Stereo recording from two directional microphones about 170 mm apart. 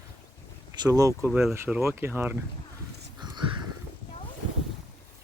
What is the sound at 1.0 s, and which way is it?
Speech, 15° right (ahead or behind).